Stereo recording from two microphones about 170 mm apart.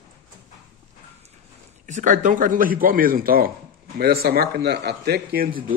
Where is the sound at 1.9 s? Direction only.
45° right (ahead or behind).